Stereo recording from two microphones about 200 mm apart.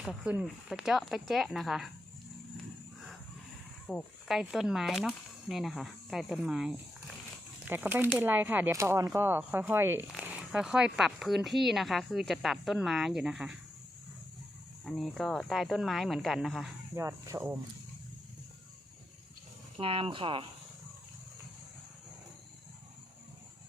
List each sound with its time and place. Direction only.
0.0 s speech: 5° right (ahead or behind)
3.8 s speech: 5° left (ahead or behind)
14.8 s speech: centre (ahead or behind)
16.9 s speech: 15° right (ahead or behind)
19.8 s speech: 25° right (ahead or behind)